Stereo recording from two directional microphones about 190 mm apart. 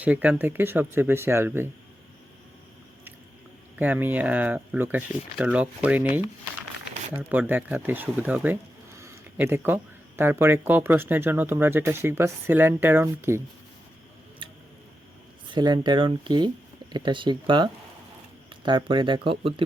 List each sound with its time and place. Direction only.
0.0 s speech: 10° right (ahead or behind)
3.8 s speech: 10° right (ahead or behind)
7.2 s speech: 10° right (ahead or behind)
15.4 s speech: 25° right (ahead or behind)